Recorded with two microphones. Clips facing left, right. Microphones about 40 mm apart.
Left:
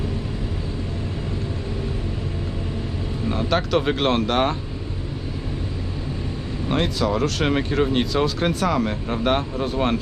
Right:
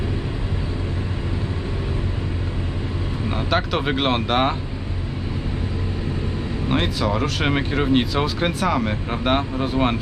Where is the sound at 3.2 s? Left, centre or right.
Centre.